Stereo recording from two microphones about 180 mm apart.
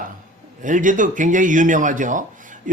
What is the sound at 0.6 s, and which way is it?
Speech, 45° right (ahead or behind).